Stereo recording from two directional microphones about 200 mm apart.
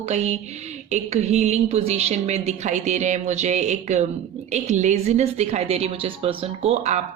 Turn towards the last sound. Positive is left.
turn(degrees=-30)  # may be behind; listen again after turning